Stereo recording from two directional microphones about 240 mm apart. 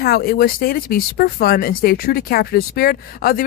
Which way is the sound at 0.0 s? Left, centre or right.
Left.